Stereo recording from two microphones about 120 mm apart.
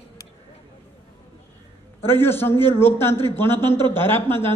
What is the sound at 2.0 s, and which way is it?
A man's voice, 20° left (ahead or behind).